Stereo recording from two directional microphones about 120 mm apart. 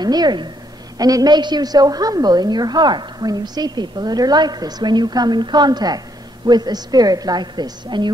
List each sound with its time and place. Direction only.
0.0 s a woman's voice: 35° right (ahead or behind)